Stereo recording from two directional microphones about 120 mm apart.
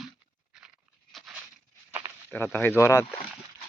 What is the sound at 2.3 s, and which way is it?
Speech, 15° left (ahead or behind).